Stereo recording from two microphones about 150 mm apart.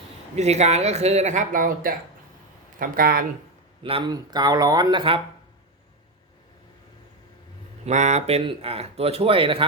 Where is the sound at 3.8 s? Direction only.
35° right (ahead or behind).